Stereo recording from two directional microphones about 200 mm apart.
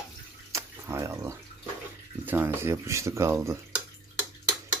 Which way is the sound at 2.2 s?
10° right (ahead or behind).